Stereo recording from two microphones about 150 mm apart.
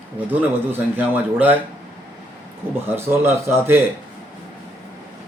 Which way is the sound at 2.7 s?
15° right (ahead or behind).